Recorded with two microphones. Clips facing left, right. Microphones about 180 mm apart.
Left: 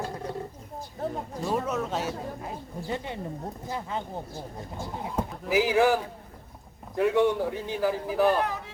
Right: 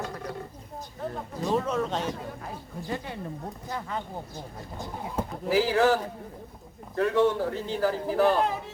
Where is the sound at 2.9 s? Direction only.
20° left (ahead or behind).